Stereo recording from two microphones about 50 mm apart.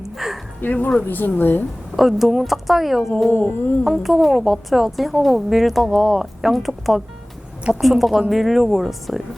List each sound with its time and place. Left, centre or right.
0.0 s a sound: centre
0.6 s speech: left
1.0 s music: left
2.0 s speech: centre
3.2 s music: left
3.8 s speech: centre